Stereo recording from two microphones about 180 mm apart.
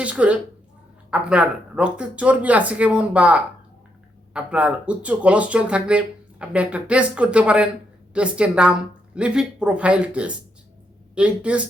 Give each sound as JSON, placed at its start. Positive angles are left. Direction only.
{"t": 0.0, "sound": "speech", "side_deg": -5}